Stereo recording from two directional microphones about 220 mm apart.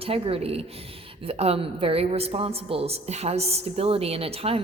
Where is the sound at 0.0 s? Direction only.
25° right (ahead or behind).